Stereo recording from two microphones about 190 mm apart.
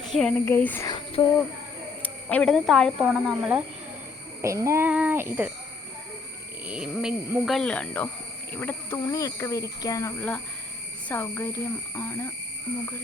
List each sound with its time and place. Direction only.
0.1 s speech: centre (ahead or behind)
0.9 s speech: 25° left (ahead or behind)
2.0 s speech: 5° left (ahead or behind)
4.4 s a child's voice: 15° right (ahead or behind)
6.7 s speech: 5° right (ahead or behind); by 12.3 s 15° left (ahead or behind)